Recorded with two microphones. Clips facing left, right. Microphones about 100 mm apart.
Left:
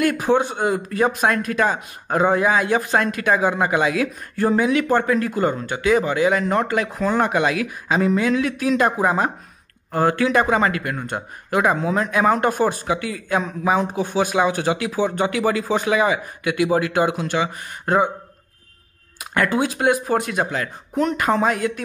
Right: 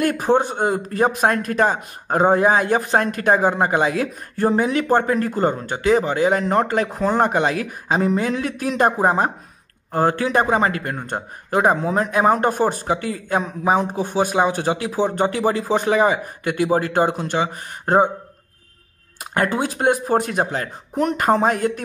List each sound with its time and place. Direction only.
0.0 s speech: 35° right (ahead or behind)
12.6 s speech: 40° right (ahead or behind)
19.3 s speech: 35° right (ahead or behind)
20.9 s speech: 50° right (ahead or behind)